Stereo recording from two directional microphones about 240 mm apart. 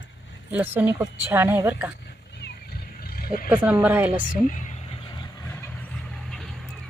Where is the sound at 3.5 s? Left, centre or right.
Centre.